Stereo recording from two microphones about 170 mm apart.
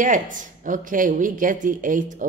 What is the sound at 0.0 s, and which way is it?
Speech, 50° right (ahead or behind).